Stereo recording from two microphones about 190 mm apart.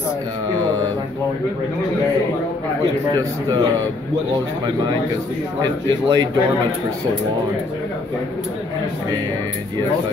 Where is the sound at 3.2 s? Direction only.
20° right (ahead or behind).